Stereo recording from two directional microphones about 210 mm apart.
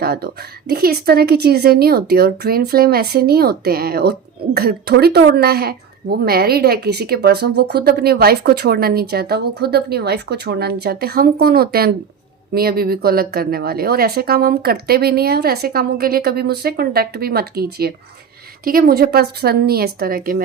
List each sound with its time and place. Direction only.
0.0 s speech: 50° right (ahead or behind)